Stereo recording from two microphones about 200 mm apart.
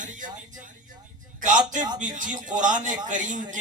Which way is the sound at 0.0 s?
40° right (ahead or behind).